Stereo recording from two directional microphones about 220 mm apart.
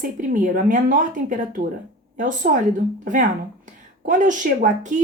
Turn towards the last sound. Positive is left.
turn(degrees=-35)  # may be behind; listen again after turning